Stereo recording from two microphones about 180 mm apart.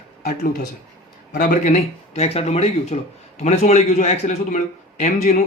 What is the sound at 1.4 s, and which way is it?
A man's voice, 45° left (ahead or behind).